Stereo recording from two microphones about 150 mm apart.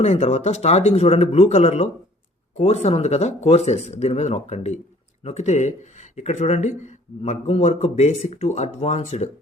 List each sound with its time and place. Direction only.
0.0 s speech: 45° left (ahead or behind)